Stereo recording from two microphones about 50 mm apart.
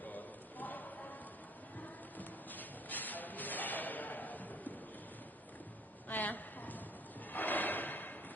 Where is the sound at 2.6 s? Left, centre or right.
Left.